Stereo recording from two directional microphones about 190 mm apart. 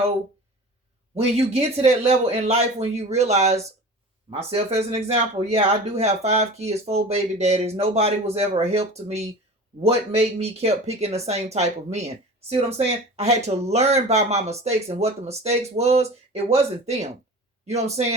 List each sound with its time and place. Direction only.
1.1 s speech: 30° right (ahead or behind)